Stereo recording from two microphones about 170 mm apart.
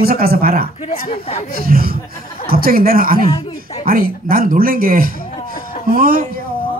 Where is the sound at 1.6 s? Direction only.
60° right (ahead or behind).